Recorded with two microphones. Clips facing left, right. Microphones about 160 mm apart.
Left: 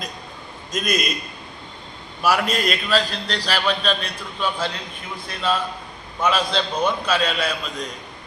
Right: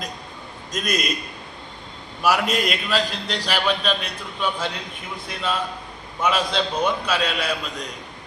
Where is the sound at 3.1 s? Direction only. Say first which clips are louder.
Left 1 dB; 20° right (ahead or behind).